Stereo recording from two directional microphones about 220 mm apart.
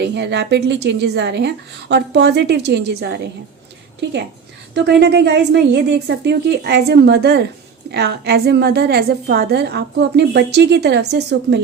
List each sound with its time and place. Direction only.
0.0 s a woman's voice: 50° right (ahead or behind)
4.7 s a woman's voice: 50° right (ahead or behind)